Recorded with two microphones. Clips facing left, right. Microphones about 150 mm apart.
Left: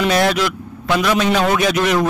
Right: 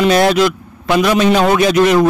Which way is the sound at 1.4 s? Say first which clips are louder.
Right 5 dB; 35° right (ahead or behind).